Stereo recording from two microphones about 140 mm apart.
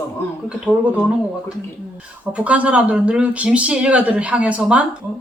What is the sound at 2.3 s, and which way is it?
Speech, 10° right (ahead or behind).